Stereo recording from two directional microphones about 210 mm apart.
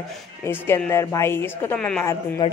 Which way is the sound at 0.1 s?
10° left (ahead or behind).